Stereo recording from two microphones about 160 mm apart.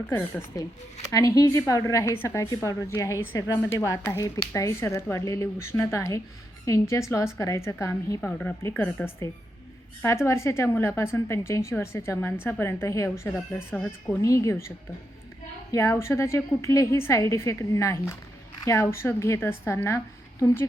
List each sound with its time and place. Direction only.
0.1 s a woman's voice: 15° left (ahead or behind)
14.2 s a woman's voice: 20° left (ahead or behind)
15.7 s a woman's voice: 15° left (ahead or behind)